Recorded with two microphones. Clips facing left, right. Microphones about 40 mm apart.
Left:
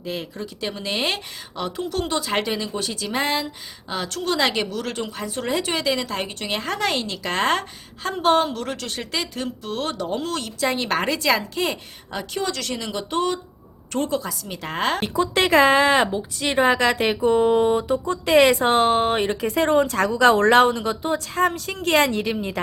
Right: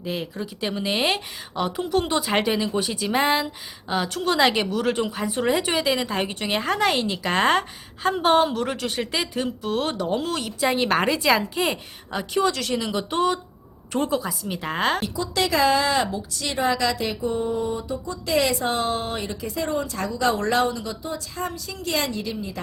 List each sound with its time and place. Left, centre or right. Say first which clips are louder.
0.0 s speech: right 1 dB; centre
15.0 s speech: left 4 dB; left